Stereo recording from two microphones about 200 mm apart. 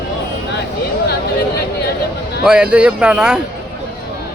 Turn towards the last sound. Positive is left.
turn(degrees=-5)  # may be behind; listen again after turning